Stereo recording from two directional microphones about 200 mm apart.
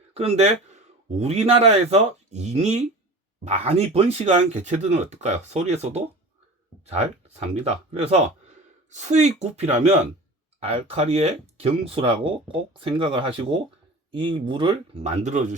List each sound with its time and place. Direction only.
0.2 s a man's voice: 30° right (ahead or behind)